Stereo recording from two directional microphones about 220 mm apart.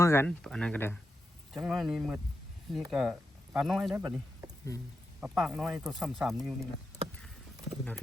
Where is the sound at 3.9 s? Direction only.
15° right (ahead or behind).